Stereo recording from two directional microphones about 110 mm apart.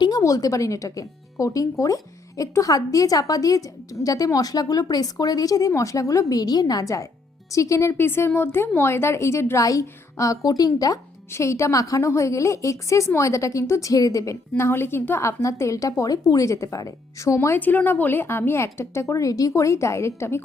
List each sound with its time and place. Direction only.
0.2 s speech: 30° left (ahead or behind)
14.5 s speech: 20° left (ahead or behind)